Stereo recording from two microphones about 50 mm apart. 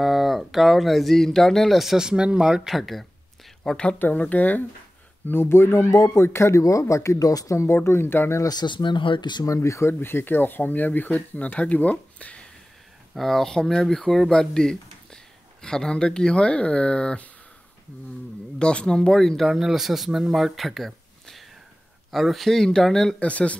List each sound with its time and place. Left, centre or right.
0.0 s speech: centre
2.0 s speech: centre
3.6 s speech: centre
4.2 s speech: left
5.2 s speech: left
6.0 s speech: left
9.5 s speech: left
9.9 s speech: left
13.1 s speech: centre
18.6 s speech: centre
19.4 s speech: centre
23.1 s speech: left